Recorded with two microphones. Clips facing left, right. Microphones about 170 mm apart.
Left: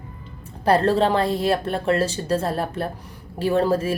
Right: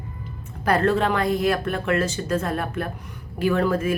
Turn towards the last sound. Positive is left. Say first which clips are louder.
# left 1 dB
turn(degrees=30)  # may be behind; listen again after turning